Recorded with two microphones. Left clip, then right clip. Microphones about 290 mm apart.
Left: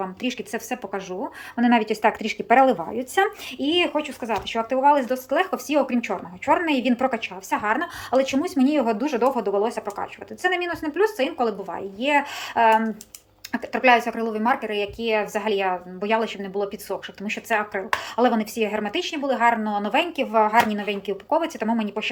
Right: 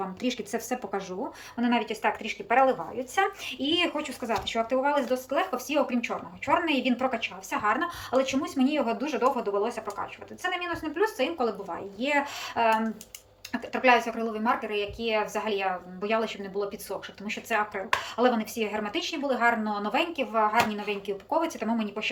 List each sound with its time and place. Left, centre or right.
0.2 s a woman's voice: centre
1.5 s speech: centre